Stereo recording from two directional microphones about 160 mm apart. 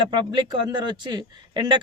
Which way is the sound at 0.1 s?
30° right (ahead or behind).